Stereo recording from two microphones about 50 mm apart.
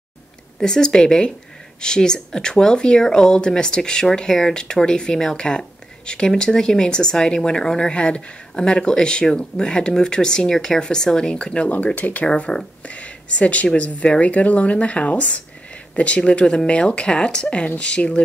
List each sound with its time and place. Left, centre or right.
0.6 s speech: centre
11.7 s speech: left